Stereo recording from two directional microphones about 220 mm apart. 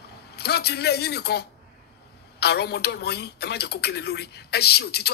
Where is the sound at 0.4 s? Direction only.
45° left (ahead or behind).